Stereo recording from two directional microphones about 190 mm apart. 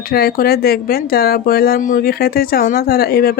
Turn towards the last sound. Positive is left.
turn(degrees=55)  # may be behind; listen again after turning